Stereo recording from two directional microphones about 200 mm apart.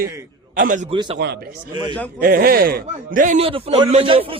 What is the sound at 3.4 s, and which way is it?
Speech, 25° right (ahead or behind).